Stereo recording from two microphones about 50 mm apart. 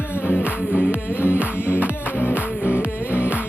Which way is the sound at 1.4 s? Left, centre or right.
Right.